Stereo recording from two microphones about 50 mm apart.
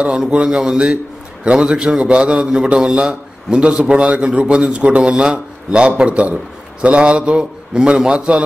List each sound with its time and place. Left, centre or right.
0.0 s a man's voice: centre